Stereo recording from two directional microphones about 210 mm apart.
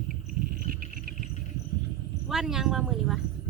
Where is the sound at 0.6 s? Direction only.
40° right (ahead or behind).